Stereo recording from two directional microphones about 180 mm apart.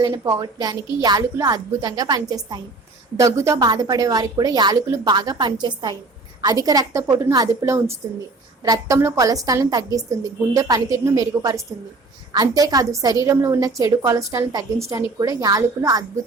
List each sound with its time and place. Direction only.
0.0 s a woman's voice: 25° right (ahead or behind)